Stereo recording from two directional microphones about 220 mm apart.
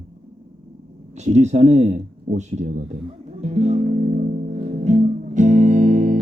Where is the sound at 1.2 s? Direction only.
30° right (ahead or behind).